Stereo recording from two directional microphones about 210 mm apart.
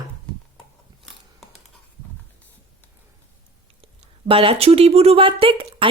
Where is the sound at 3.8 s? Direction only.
25° right (ahead or behind).